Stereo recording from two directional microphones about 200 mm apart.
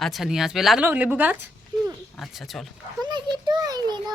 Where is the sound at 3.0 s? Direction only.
20° right (ahead or behind).